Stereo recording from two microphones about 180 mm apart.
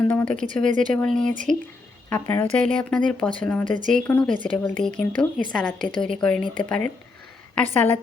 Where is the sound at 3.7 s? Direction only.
45° right (ahead or behind).